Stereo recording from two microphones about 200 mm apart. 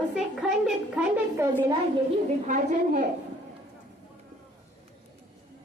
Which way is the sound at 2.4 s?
40° right (ahead or behind).